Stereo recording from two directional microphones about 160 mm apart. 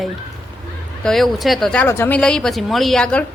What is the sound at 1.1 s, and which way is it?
Speech, centre (ahead or behind).